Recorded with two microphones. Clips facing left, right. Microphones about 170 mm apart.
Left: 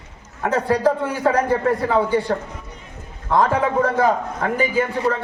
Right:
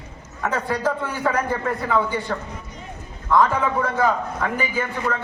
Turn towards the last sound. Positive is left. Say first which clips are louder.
# left 5 dB
turn(degrees=35)  # may be behind; listen again after turning